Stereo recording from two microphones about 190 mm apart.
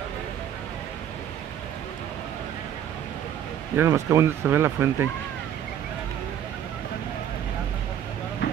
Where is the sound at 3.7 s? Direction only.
15° right (ahead or behind).